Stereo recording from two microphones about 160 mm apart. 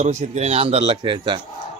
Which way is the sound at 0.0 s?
45° right (ahead or behind).